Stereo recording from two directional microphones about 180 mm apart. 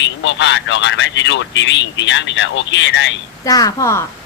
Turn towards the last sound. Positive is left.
turn(degrees=15)  # may be behind; listen again after turning